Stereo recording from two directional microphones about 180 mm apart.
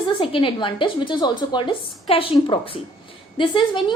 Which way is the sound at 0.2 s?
30° left (ahead or behind).